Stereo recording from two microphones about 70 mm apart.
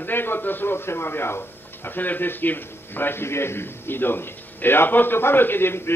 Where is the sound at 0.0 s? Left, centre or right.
Left.